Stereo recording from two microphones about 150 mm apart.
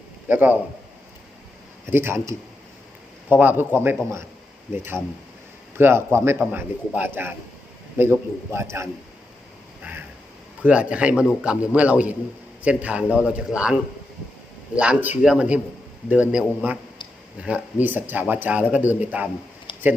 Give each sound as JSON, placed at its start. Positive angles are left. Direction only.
{"t": 0.3, "sound": "speech", "side_deg": -10}
{"t": 1.9, "sound": "speech", "side_deg": -15}
{"t": 3.2, "sound": "speech", "side_deg": -10}
{"t": 10.6, "sound": "speech", "side_deg": -10}
{"t": 14.8, "sound": "speech", "side_deg": -10}
{"t": 19.7, "sound": "a sound", "side_deg": 30}